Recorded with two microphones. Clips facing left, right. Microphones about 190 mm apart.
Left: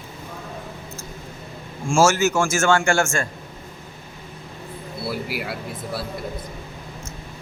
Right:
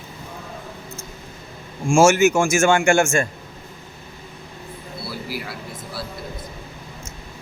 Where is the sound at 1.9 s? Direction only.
15° right (ahead or behind).